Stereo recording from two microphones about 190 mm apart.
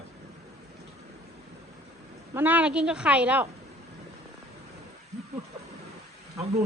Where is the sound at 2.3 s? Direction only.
10° right (ahead or behind).